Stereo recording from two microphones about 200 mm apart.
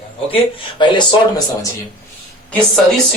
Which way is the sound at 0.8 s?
25° left (ahead or behind).